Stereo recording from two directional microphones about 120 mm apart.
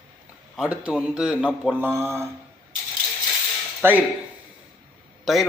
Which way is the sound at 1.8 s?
20° right (ahead or behind).